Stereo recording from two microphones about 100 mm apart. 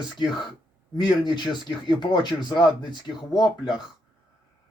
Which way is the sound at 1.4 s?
45° left (ahead or behind).